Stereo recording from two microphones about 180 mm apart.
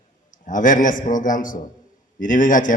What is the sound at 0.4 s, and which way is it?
A man's voice, 45° left (ahead or behind).